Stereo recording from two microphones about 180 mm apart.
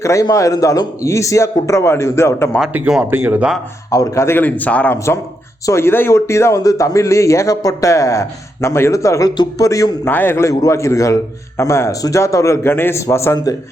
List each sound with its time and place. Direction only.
0.0 s speech: 15° left (ahead or behind)
2.6 s speech: 5° right (ahead or behind)
3.9 s speech: 15° left (ahead or behind)